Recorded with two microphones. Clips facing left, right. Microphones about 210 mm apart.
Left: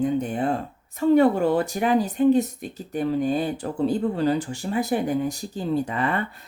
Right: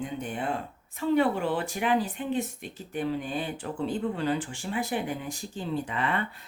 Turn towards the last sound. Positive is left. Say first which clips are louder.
# left 6 dB
turn(degrees=40)  # may be behind; listen again after turning